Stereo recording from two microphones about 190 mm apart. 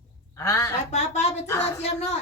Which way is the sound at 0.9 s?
35° left (ahead or behind).